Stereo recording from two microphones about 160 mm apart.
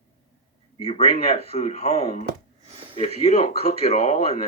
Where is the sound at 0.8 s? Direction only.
40° left (ahead or behind).